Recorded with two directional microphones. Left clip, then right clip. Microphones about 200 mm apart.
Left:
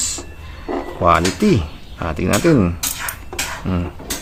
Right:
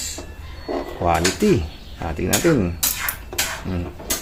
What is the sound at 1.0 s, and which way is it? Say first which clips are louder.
Speech: left 5 dB; 15° left (ahead or behind).